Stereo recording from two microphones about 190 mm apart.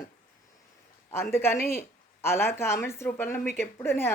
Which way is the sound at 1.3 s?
10° left (ahead or behind).